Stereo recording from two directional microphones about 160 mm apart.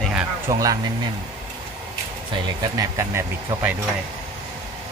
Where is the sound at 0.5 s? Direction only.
20° right (ahead or behind).